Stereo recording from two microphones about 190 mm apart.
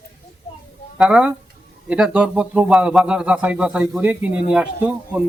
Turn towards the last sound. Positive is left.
turn(degrees=-5)  # may be behind; listen again after turning